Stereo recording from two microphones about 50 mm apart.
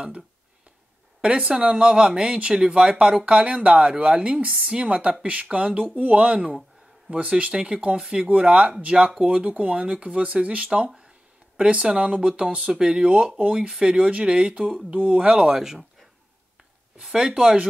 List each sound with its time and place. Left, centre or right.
1.2 s speech: centre
15.5 s speech: centre
16.9 s speech: centre